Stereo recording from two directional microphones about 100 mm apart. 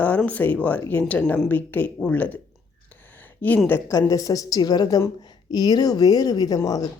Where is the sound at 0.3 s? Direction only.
15° left (ahead or behind).